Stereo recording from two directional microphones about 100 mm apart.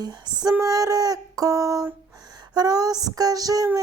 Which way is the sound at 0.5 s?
35° right (ahead or behind).